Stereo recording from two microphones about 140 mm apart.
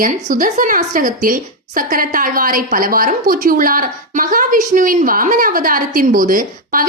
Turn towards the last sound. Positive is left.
turn(degrees=-90)